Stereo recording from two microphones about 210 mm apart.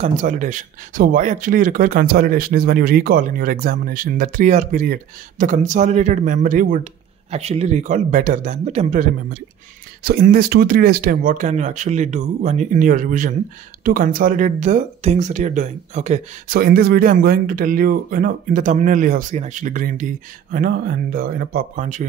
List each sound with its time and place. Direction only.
0.0 s speech: 35° right (ahead or behind)
16.5 s speech: 45° right (ahead or behind)